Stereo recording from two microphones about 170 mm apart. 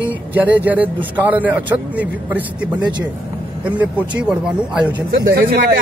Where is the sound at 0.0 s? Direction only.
10° right (ahead or behind).